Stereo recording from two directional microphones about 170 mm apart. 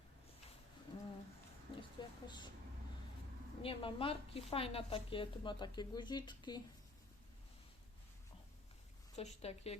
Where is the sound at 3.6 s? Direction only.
30° left (ahead or behind).